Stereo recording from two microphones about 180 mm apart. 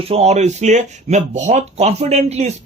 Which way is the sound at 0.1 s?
35° right (ahead or behind).